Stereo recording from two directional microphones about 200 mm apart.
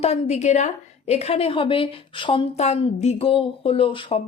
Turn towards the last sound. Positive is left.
turn(degrees=25)  # may be behind; listen again after turning